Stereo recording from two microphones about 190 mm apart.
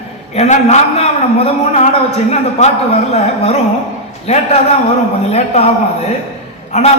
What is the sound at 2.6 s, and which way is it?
A man's voice, 35° left (ahead or behind).